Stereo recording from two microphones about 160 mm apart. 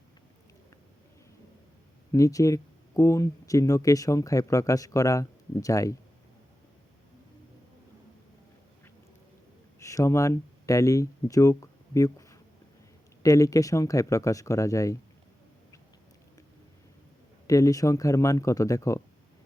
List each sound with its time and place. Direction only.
2.1 s speech: 20° left (ahead or behind)
9.8 s speech: 20° left (ahead or behind)
17.4 s speech: 20° left (ahead or behind)